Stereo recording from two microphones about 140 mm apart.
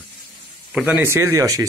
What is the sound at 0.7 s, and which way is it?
Speech, 10° right (ahead or behind).